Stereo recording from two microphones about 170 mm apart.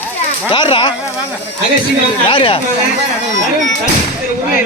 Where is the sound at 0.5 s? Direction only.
30° left (ahead or behind).